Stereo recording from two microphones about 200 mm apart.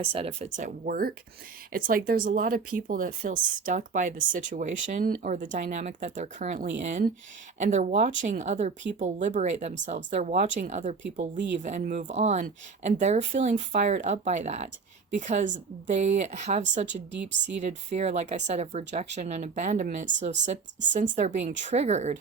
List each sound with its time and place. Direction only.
0.0 s speech: 30° right (ahead or behind)
16.9 s speech: 60° right (ahead or behind)
17.6 s speech: 35° right (ahead or behind)